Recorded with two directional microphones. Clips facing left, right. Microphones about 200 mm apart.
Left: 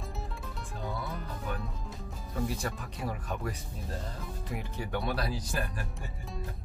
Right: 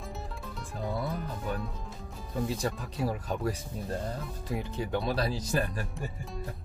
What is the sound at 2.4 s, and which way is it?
Speech, 20° right (ahead or behind).